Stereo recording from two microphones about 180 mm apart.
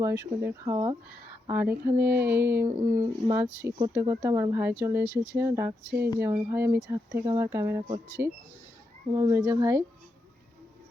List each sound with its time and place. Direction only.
0.0 s speech: 15° right (ahead or behind)
5.0 s speech: 15° left (ahead or behind)
5.3 s speech: 15° right (ahead or behind)
7.3 s speech: 15° right (ahead or behind)
9.1 s speech: 20° right (ahead or behind)